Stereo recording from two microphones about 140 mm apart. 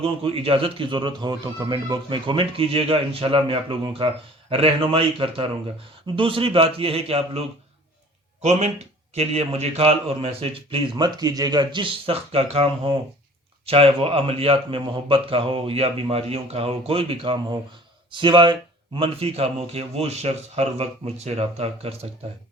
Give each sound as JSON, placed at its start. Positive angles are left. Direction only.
{"t": 0.0, "sound": "a man's voice", "side_deg": -40}
{"t": 8.4, "sound": "a man's voice", "side_deg": -55}